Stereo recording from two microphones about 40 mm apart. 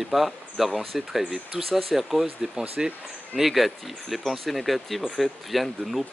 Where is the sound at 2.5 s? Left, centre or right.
Centre.